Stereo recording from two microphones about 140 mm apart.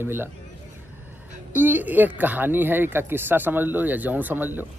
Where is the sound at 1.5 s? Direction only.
15° right (ahead or behind).